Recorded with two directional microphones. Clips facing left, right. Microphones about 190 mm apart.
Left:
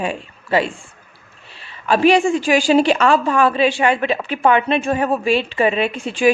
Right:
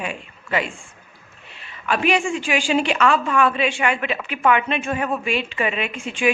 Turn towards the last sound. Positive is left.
turn(degrees=35)  # may be behind; listen again after turning